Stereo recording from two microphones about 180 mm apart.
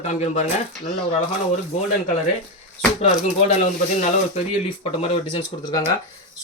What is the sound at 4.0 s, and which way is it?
Speech, 40° left (ahead or behind).